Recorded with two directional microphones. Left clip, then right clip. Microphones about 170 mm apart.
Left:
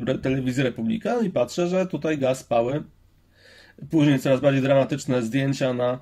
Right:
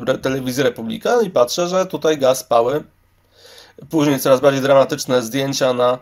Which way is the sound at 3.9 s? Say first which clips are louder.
Right 6 dB; 15° left (ahead or behind).